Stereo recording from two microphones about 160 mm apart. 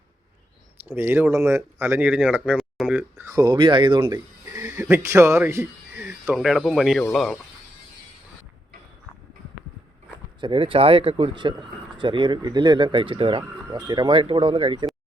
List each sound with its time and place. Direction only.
0.9 s speech: 15° right (ahead or behind)
3.2 s speech: 25° right (ahead or behind)
4.0 s speech: 15° right (ahead or behind)
6.1 s speech: 5° right (ahead or behind)
10.4 s speech: 30° right (ahead or behind)